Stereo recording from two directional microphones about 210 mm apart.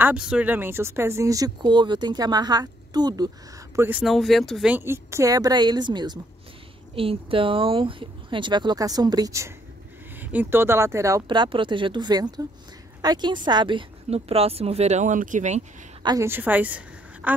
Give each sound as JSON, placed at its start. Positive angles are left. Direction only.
{"t": 0.0, "sound": "speech", "side_deg": -5}
{"t": 4.0, "sound": "speech", "side_deg": 0}
{"t": 16.0, "sound": "a woman's voice", "side_deg": -15}